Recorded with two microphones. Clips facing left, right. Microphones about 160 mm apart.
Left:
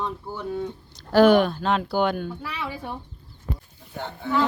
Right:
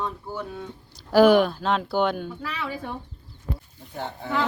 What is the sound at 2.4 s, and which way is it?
Speech, 10° left (ahead or behind).